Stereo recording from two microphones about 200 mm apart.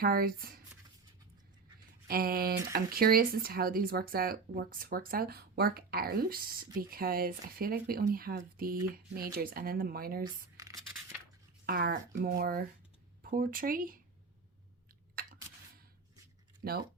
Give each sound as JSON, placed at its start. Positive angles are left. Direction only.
{"t": 0.0, "sound": "speech", "side_deg": -50}
{"t": 2.0, "sound": "speech", "side_deg": -50}
{"t": 11.6, "sound": "speech", "side_deg": -50}
{"t": 15.1, "sound": "a sound", "side_deg": -45}
{"t": 16.6, "sound": "speech", "side_deg": -50}